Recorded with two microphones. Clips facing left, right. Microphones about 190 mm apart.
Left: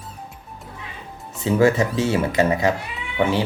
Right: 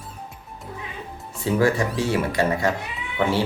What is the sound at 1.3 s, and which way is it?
Speech, 20° left (ahead or behind).